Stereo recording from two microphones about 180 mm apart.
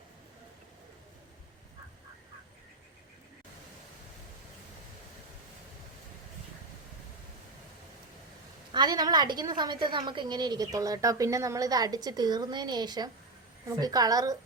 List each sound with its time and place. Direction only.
8.7 s a woman's voice: 25° right (ahead or behind)